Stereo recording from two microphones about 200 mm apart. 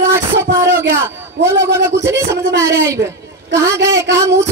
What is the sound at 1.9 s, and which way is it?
Speech, 10° right (ahead or behind).